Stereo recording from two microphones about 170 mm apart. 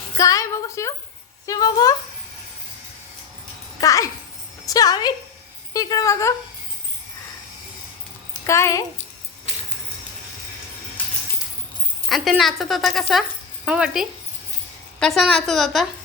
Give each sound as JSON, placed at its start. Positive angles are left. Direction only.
{"t": 0.2, "sound": "a sound", "side_deg": 20}
{"t": 1.5, "sound": "speech", "side_deg": 20}
{"t": 3.8, "sound": "speech", "side_deg": 20}
{"t": 8.3, "sound": "a sound", "side_deg": 15}
{"t": 11.0, "sound": "coin", "side_deg": 10}
{"t": 12.0, "sound": "speech", "side_deg": 0}